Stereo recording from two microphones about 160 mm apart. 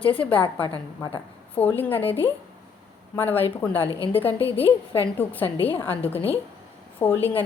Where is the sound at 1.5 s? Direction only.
10° left (ahead or behind).